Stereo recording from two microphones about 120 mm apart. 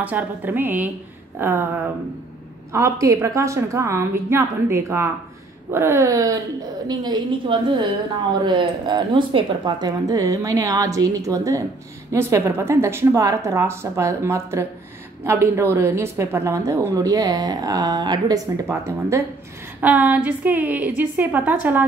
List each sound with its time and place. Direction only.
0.0 s a woman's voice: 15° right (ahead or behind)
2.7 s a woman's voice: 25° right (ahead or behind)
18.7 s a woman's voice: 25° right (ahead or behind)
19.8 s a woman's voice: 15° right (ahead or behind)